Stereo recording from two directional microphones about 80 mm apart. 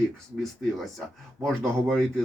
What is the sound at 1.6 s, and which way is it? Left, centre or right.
Speech, centre.